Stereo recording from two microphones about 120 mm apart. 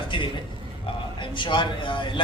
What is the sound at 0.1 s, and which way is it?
A man's voice, 45° left (ahead or behind).